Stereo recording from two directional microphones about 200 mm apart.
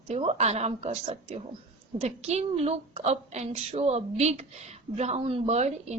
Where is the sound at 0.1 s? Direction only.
30° right (ahead or behind).